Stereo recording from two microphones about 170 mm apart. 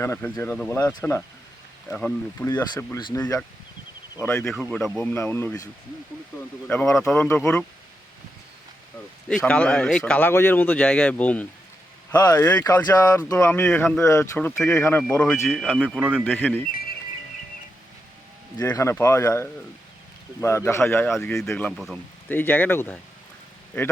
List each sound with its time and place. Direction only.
0.0 s speech: 15° left (ahead or behind)
2.7 s speech: 25° left (ahead or behind)
4.2 s speech: 10° left (ahead or behind)
6.7 s speech: 5° left (ahead or behind)
9.4 s speech: 10° left (ahead or behind)
12.1 s speech: 20° left (ahead or behind)
15.4 s speech: 5° left (ahead or behind)
16.3 s speech: 10° left (ahead or behind)
18.5 s speech: 20° left (ahead or behind); by 21.9 s centre (ahead or behind)
22.3 s speech: 10° left (ahead or behind)